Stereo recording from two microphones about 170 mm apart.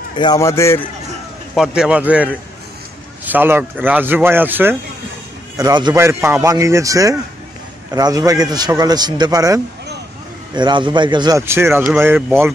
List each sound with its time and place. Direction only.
0.2 s a man's voice: 20° left (ahead or behind)
1.5 s speech: 5° right (ahead or behind)
5.6 s a man's voice: 25° right (ahead or behind)